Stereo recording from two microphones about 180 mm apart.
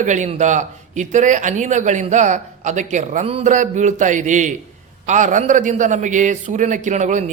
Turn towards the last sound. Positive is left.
turn(degrees=-40)  # may be behind; listen again after turning